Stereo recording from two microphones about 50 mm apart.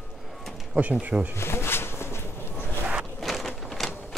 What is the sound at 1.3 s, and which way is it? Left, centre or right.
Pigeon, left.